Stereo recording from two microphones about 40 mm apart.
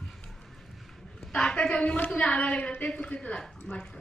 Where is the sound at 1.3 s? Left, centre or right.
Left.